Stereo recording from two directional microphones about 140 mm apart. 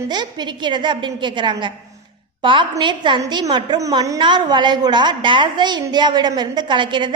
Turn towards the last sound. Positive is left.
turn(degrees=-35)  # may be behind; listen again after turning